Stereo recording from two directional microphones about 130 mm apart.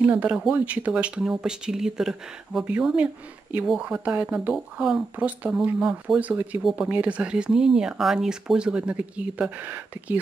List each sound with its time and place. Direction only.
0.0 s speech: 10° right (ahead or behind)